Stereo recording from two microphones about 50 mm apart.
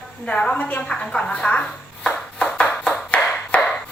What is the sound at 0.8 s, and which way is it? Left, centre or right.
Ping, centre.